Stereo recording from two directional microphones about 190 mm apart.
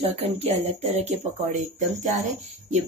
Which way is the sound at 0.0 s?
30° right (ahead or behind).